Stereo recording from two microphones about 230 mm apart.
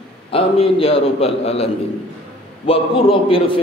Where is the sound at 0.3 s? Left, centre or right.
Left.